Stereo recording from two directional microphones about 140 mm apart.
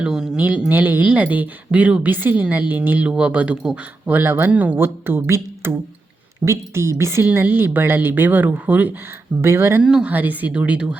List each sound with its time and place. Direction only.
0.0 s speech: 5° right (ahead or behind)
9.8 s speech: 5° right (ahead or behind)